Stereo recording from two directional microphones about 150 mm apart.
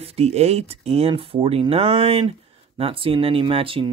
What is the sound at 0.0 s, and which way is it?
Speech, 45° right (ahead or behind).